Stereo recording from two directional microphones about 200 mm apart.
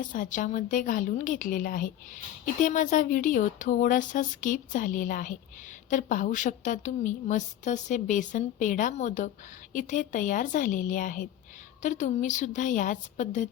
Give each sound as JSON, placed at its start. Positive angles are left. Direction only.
{"t": 0.0, "sound": "a woman's voice", "side_deg": 40}